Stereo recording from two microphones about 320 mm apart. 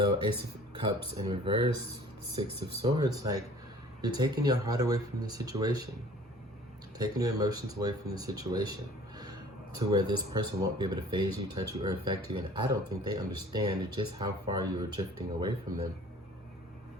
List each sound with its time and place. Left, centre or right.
0.7 s speech: centre
7.0 s speech: centre
9.7 s speech: centre